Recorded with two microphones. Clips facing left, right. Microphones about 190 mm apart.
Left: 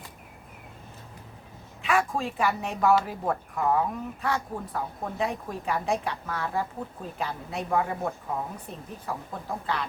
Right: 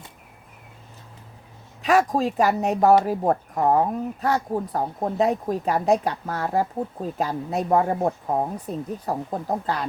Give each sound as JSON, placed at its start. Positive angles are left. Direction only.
{"t": 1.8, "sound": "speech", "side_deg": -40}